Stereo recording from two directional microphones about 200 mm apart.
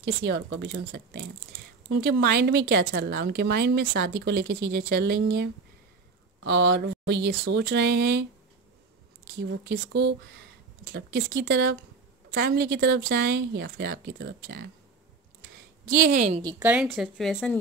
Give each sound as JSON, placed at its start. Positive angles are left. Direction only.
{"t": 0.0, "sound": "speech", "side_deg": -60}
{"t": 9.4, "sound": "speech", "side_deg": -60}
{"t": 15.4, "sound": "a sound", "side_deg": -50}
{"t": 16.5, "sound": "speech", "side_deg": -10}